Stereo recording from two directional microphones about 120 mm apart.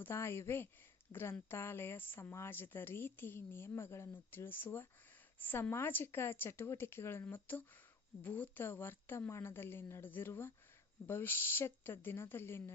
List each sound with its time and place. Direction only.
0.0 s speech: 20° left (ahead or behind)